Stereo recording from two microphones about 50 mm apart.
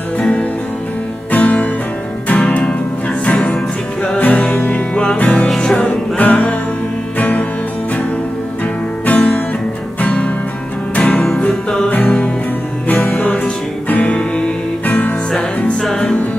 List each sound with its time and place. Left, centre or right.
0.2 s music: left
1.3 s music: left
4.2 s music: left
9.0 s music: left; by 11.2 s centre
12.8 s music: left
15.3 s music: centre